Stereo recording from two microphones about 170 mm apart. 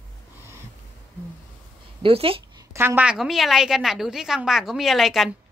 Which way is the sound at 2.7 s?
15° right (ahead or behind).